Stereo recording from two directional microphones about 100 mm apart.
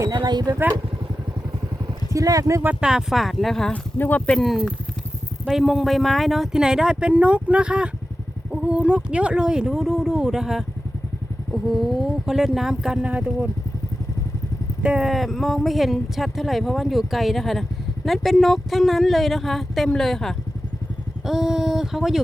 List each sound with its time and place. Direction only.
0.1 s a sound: 45° right (ahead or behind)
2.1 s speech: 35° right (ahead or behind)
2.6 s speech: 10° right (ahead or behind)
3.9 s speech: 15° left (ahead or behind)
4.4 s speech: centre (ahead or behind)
14.8 s speech: 10° right (ahead or behind)